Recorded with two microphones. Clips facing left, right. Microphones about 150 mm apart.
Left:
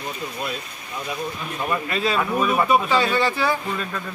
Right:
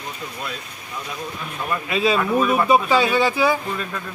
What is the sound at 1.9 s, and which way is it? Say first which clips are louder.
Speech: right 8 dB; 15° right (ahead or behind).